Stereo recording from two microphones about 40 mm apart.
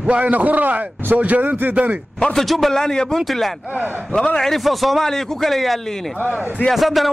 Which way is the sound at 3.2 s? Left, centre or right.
Centre.